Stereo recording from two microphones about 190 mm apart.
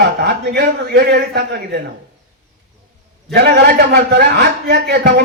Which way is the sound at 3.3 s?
55° right (ahead or behind).